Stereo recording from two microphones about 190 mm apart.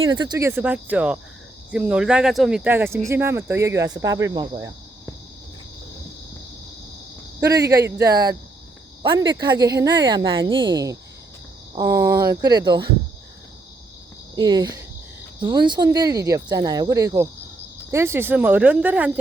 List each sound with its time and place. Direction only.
0.2 s speech: 20° right (ahead or behind)
8.0 s speech: 20° right (ahead or behind)
14.3 s speech: 20° right (ahead or behind)